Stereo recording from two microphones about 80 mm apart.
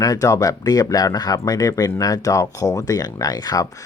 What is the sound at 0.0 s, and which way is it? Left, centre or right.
Speech, left.